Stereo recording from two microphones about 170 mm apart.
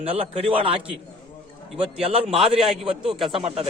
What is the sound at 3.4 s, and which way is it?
Speech, 35° right (ahead or behind).